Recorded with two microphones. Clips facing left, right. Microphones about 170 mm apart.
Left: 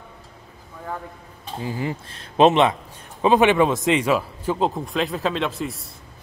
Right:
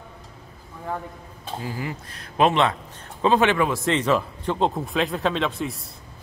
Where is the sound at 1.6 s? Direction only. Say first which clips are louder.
Left 5 dB; 25° left (ahead or behind).